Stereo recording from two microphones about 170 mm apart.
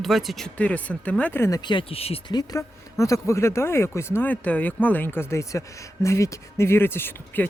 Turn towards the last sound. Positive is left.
turn(degrees=15)  # may be behind; listen again after turning